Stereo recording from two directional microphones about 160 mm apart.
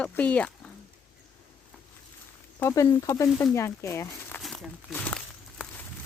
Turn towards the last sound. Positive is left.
turn(degrees=5)  # may be behind; listen again after turning